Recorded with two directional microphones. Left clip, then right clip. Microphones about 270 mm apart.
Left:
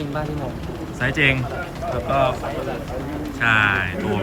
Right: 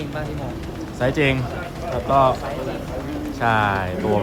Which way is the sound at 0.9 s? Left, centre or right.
Centre.